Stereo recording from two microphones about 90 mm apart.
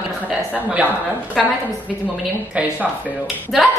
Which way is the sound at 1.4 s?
Centre (ahead or behind).